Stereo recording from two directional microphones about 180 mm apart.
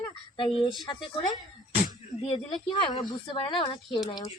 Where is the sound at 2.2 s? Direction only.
25° left (ahead or behind).